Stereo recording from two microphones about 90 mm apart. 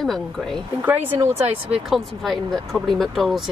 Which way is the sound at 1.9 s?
Centre (ahead or behind).